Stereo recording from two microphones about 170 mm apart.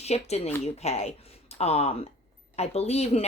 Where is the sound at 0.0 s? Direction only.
40° left (ahead or behind).